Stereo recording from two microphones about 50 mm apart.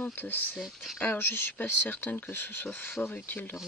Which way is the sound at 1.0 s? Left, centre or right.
Left.